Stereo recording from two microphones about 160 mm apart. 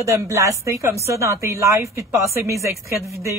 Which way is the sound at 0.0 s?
20° right (ahead or behind).